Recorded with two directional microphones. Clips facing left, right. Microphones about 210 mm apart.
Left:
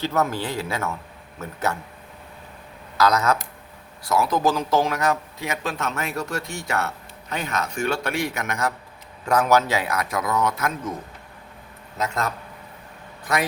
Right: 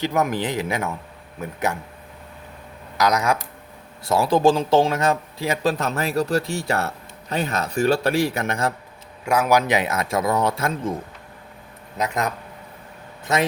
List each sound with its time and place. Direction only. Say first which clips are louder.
0.0 s speech: right 2 dB; 15° right (ahead or behind)
3.0 s speech: even; 15° right (ahead or behind)
4.0 s a man's voice: right 4 dB; 30° right (ahead or behind)
9.2 s a man's voice: even; 10° right (ahead or behind); by 10.9 s 30° right (ahead or behind)
11.9 s speech: right 2 dB; 15° right (ahead or behind)
13.3 s a man's voice: right 3 dB; 25° right (ahead or behind)